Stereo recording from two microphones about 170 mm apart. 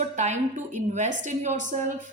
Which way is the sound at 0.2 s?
45° right (ahead or behind).